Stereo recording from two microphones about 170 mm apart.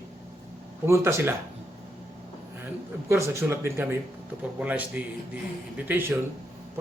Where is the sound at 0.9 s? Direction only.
15° right (ahead or behind).